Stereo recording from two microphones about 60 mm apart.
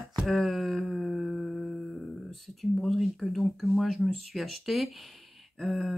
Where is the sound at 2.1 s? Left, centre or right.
Centre.